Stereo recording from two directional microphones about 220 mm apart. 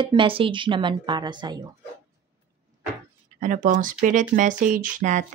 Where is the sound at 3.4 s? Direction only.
35° right (ahead or behind).